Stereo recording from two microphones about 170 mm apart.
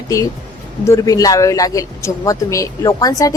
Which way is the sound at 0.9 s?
20° left (ahead or behind).